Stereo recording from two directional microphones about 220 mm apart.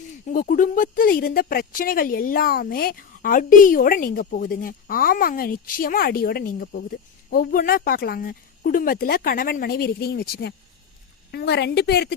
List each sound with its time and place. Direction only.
0.3 s a woman's voice: 40° left (ahead or behind)